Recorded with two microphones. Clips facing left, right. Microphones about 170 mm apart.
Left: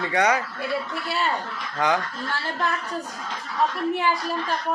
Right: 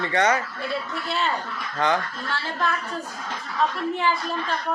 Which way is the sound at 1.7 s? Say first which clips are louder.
Even; 10° left (ahead or behind).